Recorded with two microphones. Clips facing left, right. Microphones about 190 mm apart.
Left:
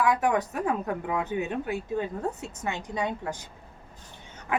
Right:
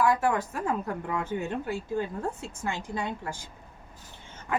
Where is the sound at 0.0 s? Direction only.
15° left (ahead or behind).